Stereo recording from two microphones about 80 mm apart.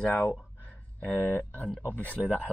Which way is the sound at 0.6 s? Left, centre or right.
Left.